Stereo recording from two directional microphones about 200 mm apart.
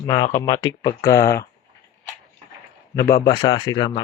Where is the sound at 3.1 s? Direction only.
50° left (ahead or behind).